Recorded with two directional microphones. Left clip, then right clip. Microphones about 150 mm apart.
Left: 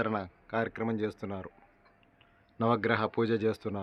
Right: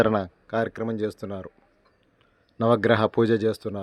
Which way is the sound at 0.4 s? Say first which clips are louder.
Right 6 dB; 40° right (ahead or behind).